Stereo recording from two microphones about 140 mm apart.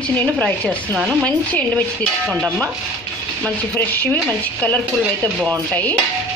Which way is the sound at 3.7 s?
10° left (ahead or behind).